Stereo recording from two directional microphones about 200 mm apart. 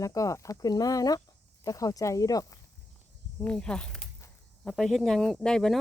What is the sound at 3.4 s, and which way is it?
Speech, 5° left (ahead or behind).